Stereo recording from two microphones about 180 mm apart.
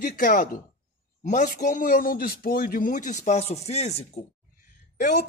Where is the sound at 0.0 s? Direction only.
50° left (ahead or behind).